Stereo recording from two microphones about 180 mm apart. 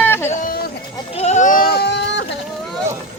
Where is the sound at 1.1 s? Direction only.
40° left (ahead or behind); by 2.3 s 75° left (ahead or behind).